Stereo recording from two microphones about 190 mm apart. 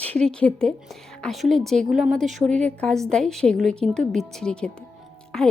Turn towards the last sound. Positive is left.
turn(degrees=5)  # may be behind; listen again after turning